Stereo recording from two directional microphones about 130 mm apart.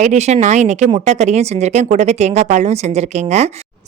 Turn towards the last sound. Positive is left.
turn(degrees=-55)  # may be behind; listen again after turning